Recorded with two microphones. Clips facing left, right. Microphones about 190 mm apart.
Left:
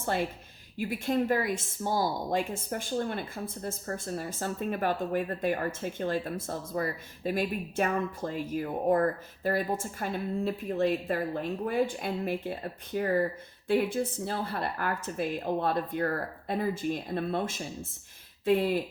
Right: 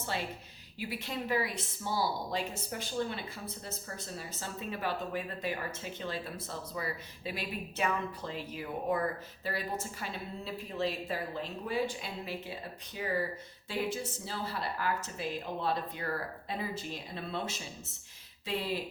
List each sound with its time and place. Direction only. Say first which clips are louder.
0.0 s speech: left 7 dB; 50° left (ahead or behind)